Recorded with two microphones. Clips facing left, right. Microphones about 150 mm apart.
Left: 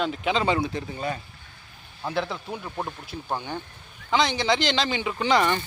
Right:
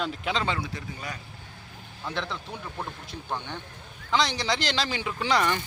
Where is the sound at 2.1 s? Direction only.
5° left (ahead or behind).